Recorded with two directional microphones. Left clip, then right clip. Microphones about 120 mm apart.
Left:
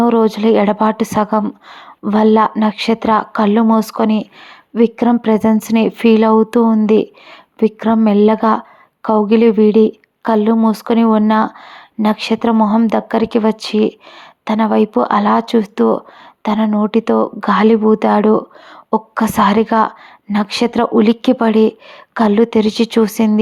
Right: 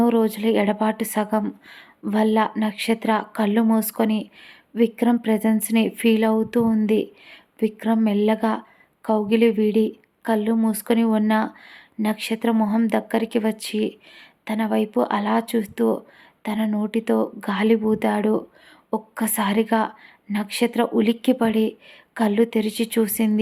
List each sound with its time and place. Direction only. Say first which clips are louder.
0.0 s a woman's voice: left 8 dB; 30° left (ahead or behind)
16.6 s speech: left 10 dB; 20° left (ahead or behind)
16.9 s a woman's voice: left 6 dB; 30° left (ahead or behind)